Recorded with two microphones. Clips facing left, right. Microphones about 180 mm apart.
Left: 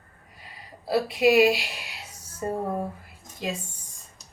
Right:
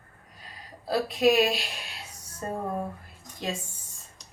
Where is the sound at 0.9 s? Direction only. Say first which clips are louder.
Left 2 dB; 5° left (ahead or behind).